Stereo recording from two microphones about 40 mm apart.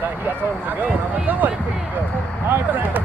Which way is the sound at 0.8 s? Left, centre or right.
Right.